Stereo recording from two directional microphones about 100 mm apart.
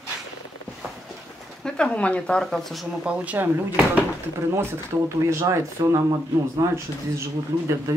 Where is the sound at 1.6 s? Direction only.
10° left (ahead or behind).